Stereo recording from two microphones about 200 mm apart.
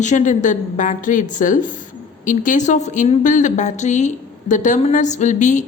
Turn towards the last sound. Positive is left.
turn(degrees=40)  # may be behind; listen again after turning